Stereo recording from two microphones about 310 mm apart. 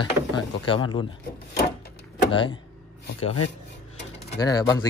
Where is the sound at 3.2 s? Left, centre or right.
Left.